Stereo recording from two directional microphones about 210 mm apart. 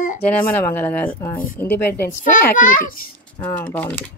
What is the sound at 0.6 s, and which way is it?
Speech, 10° left (ahead or behind).